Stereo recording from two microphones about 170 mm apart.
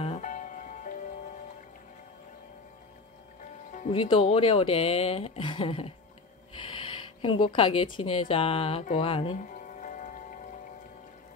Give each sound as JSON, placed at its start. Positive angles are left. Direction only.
{"t": 0.0, "sound": "music", "side_deg": 45}
{"t": 3.9, "sound": "speech", "side_deg": 35}
{"t": 9.4, "sound": "music", "side_deg": 50}